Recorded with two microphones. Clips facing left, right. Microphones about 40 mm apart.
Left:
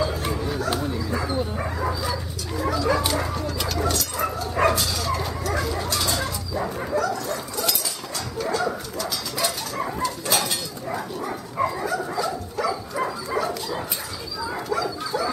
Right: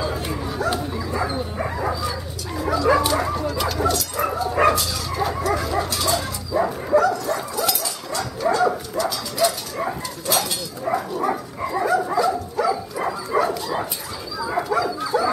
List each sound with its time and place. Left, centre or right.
0.0 s bow-wow: centre
2.0 s dog: centre
3.0 s bow-wow: centre
6.5 s bow-wow: centre
7.1 s dog: centre
11.1 s dog: centre
13.0 s dog: centre
14.4 s bow-wow: centre
15.0 s dog: centre